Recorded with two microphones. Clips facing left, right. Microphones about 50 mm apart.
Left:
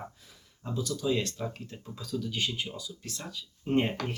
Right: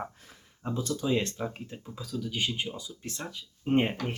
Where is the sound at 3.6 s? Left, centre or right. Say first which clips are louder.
Right 2 dB; centre.